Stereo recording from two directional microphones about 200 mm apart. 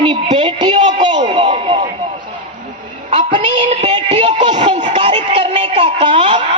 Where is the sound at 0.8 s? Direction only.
35° right (ahead or behind).